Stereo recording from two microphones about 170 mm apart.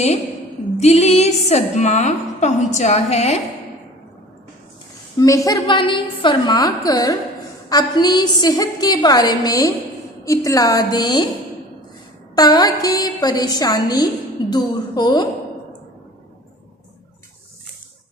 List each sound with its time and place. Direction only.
0.8 s a woman's voice: 40° left (ahead or behind)
5.1 s a woman's voice: 20° left (ahead or behind)
12.4 s a woman's voice: 25° left (ahead or behind)